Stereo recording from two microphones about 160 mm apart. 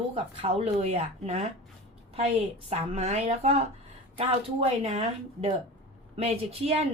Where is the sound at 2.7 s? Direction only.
45° right (ahead or behind).